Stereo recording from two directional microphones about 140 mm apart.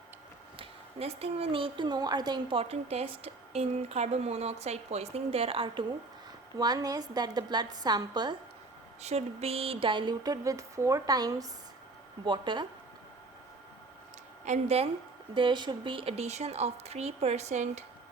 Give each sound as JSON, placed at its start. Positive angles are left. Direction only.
{"t": 0.6, "sound": "speech", "side_deg": -45}
{"t": 6.6, "sound": "a sound", "side_deg": -25}
{"t": 9.0, "sound": "a sound", "side_deg": -50}
{"t": 12.2, "sound": "speech", "side_deg": -35}
{"t": 14.4, "sound": "speech", "side_deg": -50}
{"t": 15.4, "sound": "speech", "side_deg": -35}